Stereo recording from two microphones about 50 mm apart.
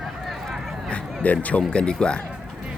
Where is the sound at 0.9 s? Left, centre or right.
Left.